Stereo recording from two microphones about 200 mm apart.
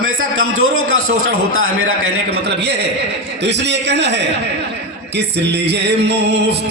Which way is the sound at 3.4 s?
60° right (ahead or behind).